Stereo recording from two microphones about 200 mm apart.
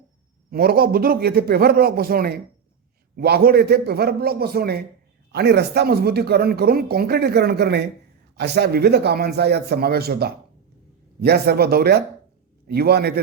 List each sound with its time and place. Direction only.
0.5 s speech: 50° right (ahead or behind)